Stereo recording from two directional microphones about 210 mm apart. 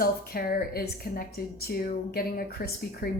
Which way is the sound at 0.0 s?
45° left (ahead or behind).